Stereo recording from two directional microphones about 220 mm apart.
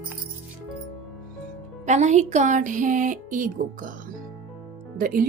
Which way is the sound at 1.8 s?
30° right (ahead or behind).